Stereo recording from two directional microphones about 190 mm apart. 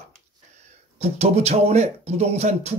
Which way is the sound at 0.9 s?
35° right (ahead or behind).